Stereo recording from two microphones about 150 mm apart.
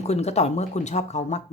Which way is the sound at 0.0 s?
45° left (ahead or behind).